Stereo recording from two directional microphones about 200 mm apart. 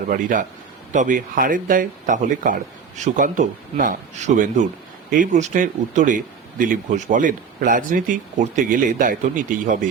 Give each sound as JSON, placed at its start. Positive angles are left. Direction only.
{"t": 0.1, "sound": "speech", "side_deg": -40}